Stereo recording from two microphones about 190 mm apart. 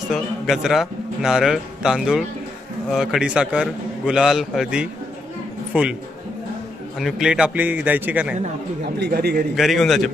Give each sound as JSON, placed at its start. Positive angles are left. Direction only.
{"t": 0.1, "sound": "a man's voice", "side_deg": 0}
{"t": 7.0, "sound": "a man's voice", "side_deg": 0}
{"t": 8.8, "sound": "a man's voice", "side_deg": -60}
{"t": 9.6, "sound": "a man's voice", "side_deg": 0}